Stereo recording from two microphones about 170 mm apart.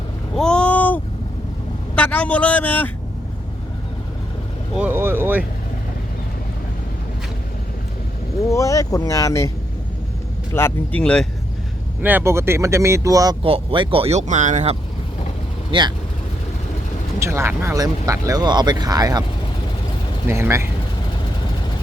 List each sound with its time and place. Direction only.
0.3 s a sound: 5° left (ahead or behind)
2.0 s speech: 10° left (ahead or behind)
4.8 s speech: 10° right (ahead or behind)
8.4 s speech: 20° left (ahead or behind)
10.5 s speech: 10° left (ahead or behind)
12.0 s speech: 15° right (ahead or behind)
13.4 s speech: 35° right (ahead or behind)
15.7 s speech: 30° right (ahead or behind)
17.2 s speech: 15° right (ahead or behind)
20.2 s speech: 15° right (ahead or behind)